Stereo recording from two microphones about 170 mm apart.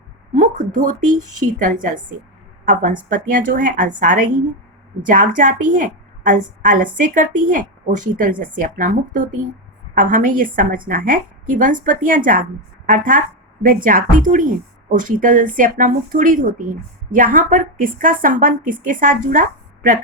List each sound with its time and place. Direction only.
0.3 s a woman's voice: 50° right (ahead or behind)